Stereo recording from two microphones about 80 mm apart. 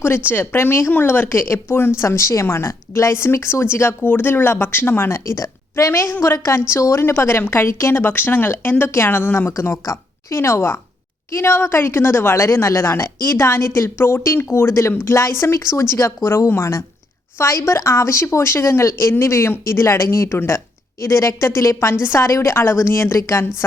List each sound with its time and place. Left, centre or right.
0.0 s a woman's voice: left